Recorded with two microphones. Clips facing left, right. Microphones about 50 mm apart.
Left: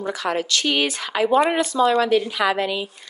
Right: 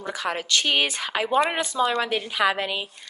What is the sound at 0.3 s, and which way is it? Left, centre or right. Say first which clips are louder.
Speech: left 1 dB; right.